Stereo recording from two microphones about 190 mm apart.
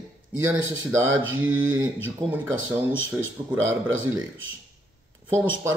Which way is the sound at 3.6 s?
90° right.